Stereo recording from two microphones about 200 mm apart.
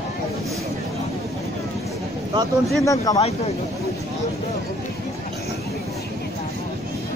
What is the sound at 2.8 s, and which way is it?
Speech, 20° left (ahead or behind).